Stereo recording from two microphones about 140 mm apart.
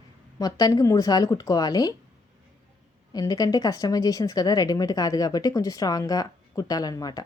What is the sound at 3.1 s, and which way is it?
A woman's voice, 25° left (ahead or behind).